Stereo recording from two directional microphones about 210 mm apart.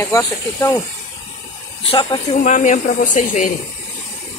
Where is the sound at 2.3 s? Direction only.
35° left (ahead or behind).